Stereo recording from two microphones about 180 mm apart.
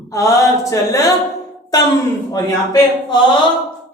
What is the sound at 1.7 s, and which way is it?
Speech, 20° left (ahead or behind).